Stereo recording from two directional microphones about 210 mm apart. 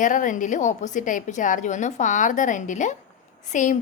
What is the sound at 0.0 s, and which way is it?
A woman's voice, 40° left (ahead or behind).